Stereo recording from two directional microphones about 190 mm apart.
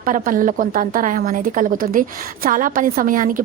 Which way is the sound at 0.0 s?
45° right (ahead or behind).